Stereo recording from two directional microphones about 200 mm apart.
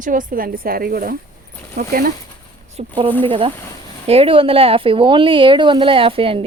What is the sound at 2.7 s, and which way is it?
Speech, 25° right (ahead or behind).